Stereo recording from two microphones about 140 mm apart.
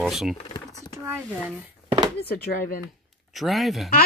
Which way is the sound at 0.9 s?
20° right (ahead or behind).